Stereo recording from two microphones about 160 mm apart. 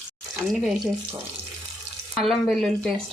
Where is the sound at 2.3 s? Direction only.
Centre (ahead or behind).